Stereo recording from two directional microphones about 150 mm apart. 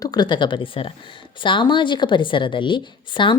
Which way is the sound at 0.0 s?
25° left (ahead or behind).